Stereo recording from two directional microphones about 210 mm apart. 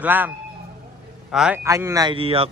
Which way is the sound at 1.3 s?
5° right (ahead or behind).